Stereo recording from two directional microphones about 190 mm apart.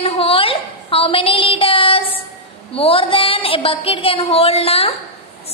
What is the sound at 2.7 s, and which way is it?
A woman's voice, 30° left (ahead or behind).